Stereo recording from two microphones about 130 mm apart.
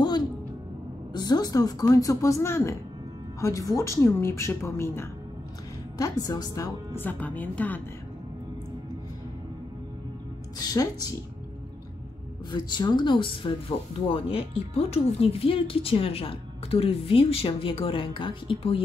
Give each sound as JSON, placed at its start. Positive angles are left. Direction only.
{"t": 1.1, "sound": "speech", "side_deg": 30}
{"t": 10.6, "sound": "speech", "side_deg": 30}
{"t": 12.4, "sound": "speech", "side_deg": 35}